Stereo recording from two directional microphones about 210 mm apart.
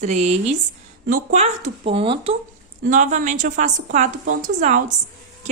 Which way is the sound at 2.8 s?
35° right (ahead or behind).